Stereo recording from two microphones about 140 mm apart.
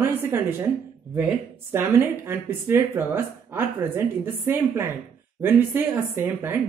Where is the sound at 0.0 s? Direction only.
15° right (ahead or behind).